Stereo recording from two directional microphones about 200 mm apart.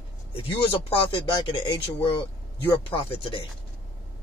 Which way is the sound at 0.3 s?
30° left (ahead or behind).